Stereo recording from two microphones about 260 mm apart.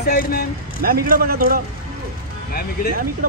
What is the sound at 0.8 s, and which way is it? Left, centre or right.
Speech, right.